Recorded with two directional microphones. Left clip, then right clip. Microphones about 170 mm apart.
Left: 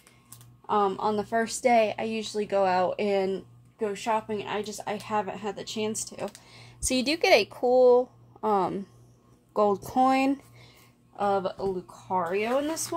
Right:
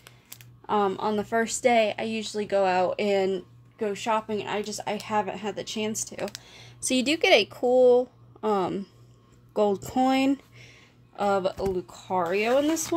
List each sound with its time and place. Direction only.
0.7 s speech: 30° right (ahead or behind)
1.4 s speech: 15° right (ahead or behind); by 6.3 s 30° right (ahead or behind)
6.3 s a sound: 15° right (ahead or behind)
7.6 s speech: 10° left (ahead or behind)
8.4 s speech: 35° right (ahead or behind)
9.8 s speech: 35° right (ahead or behind)